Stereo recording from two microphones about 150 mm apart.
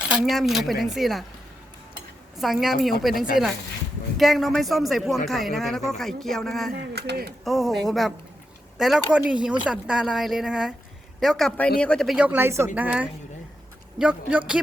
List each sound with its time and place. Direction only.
0.0 s speech: centre (ahead or behind)
2.4 s speech: centre (ahead or behind)
6.7 s speech: 90° right
7.4 s a woman's voice: centre (ahead or behind)